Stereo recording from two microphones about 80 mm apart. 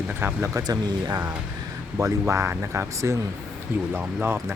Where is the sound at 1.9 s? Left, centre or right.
Right.